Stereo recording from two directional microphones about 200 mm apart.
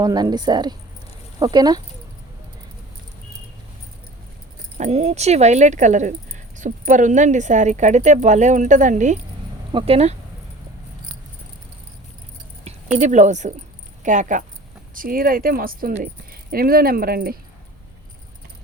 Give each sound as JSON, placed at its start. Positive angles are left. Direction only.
{"t": 0.0, "sound": "a woman's voice", "side_deg": -20}
{"t": 4.8, "sound": "a woman's voice", "side_deg": -30}
{"t": 12.6, "sound": "speech", "side_deg": -35}